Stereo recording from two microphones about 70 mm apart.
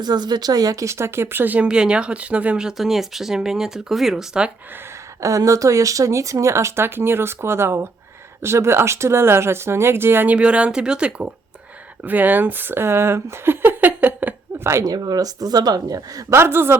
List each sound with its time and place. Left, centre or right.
0.0 s speech: right
1.5 s speech: centre
2.6 s speech: centre
5.2 s speech: right
10.2 s speech: centre
12.0 s speech: right
14.6 s speech: right
14.8 s speech: right
16.3 s speech: right